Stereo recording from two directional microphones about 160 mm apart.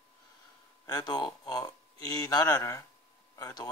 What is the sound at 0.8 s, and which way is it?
Speech, 25° left (ahead or behind).